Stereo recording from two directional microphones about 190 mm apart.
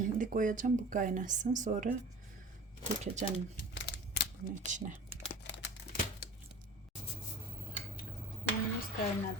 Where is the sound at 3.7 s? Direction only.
70° left (ahead or behind).